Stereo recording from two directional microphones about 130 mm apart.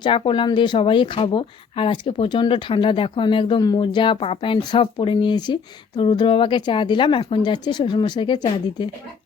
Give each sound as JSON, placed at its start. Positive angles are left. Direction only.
{"t": 0.0, "sound": "speech", "side_deg": 40}